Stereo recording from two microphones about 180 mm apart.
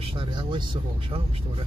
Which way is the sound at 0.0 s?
30° right (ahead or behind).